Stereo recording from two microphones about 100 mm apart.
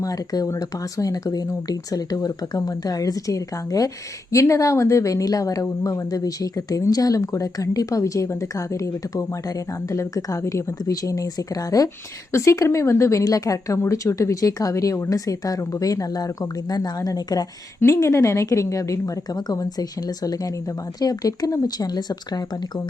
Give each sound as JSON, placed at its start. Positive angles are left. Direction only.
{"t": 0.0, "sound": "speech", "side_deg": 35}
{"t": 17.7, "sound": "speech", "side_deg": 30}